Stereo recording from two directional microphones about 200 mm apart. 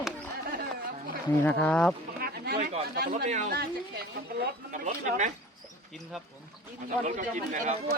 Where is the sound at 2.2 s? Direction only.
50° right (ahead or behind).